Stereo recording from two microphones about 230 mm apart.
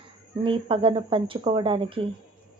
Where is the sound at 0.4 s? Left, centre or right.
Right.